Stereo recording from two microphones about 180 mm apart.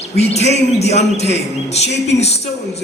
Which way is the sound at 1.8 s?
70° left (ahead or behind).